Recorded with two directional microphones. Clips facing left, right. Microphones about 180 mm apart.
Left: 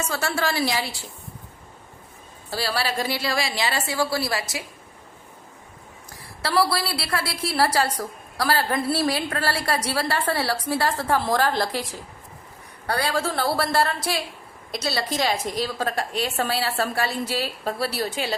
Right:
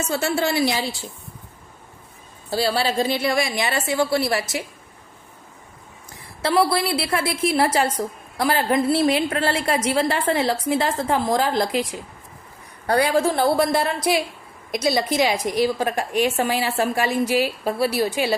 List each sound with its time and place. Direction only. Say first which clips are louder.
0.0 s a woman's voice: right 4 dB; 25° right (ahead or behind)
2.5 s a woman's voice: right 5 dB; 25° right (ahead or behind)
6.4 s a woman's voice: right 3 dB; 20° right (ahead or behind)
13.5 s a woman's voice: right 3 dB; 20° right (ahead or behind)